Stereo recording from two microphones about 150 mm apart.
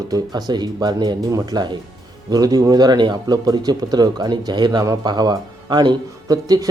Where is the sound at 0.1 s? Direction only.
25° right (ahead or behind).